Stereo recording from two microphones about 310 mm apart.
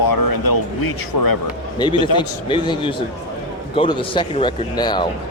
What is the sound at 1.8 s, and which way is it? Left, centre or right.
Speech, centre.